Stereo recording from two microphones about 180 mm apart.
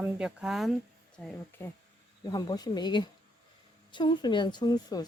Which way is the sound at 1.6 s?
10° left (ahead or behind).